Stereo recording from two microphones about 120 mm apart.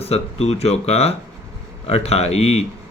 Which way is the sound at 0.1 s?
60° left (ahead or behind).